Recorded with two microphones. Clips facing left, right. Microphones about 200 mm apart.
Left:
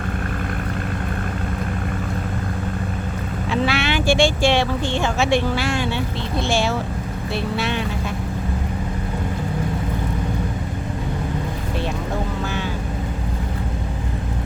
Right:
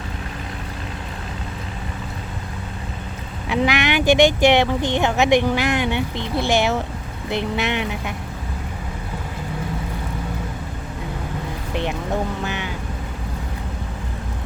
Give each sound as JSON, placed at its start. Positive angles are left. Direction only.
{"t": 3.5, "sound": "speech", "side_deg": -15}